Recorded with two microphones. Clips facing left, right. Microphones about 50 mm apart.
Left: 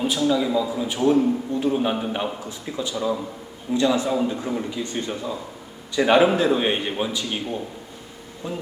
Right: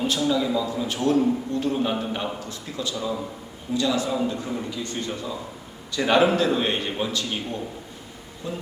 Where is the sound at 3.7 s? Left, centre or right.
Left.